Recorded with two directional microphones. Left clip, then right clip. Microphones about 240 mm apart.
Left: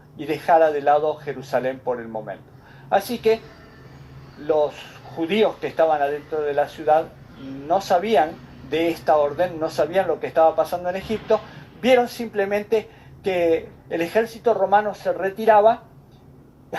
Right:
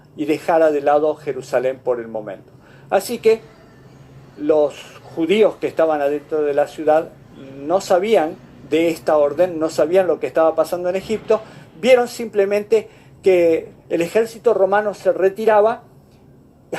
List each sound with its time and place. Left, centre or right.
0.2 s speech: right
4.4 s speech: right